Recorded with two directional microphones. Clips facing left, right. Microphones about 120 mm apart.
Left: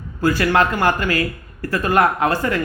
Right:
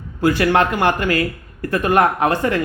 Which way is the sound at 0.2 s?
20° right (ahead or behind).